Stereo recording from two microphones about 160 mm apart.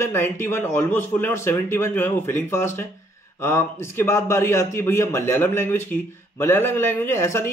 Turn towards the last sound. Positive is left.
turn(degrees=15)  # may be behind; listen again after turning